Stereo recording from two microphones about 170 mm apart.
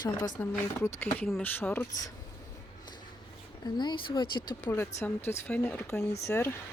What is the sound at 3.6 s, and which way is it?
Speech, 25° left (ahead or behind).